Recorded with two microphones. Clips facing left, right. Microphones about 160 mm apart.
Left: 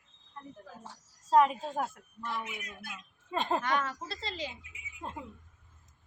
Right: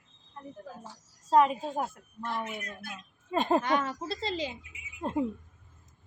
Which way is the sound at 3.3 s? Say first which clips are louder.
Right 5 dB; 10° right (ahead or behind).